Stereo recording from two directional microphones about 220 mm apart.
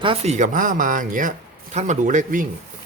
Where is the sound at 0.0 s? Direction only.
25° right (ahead or behind).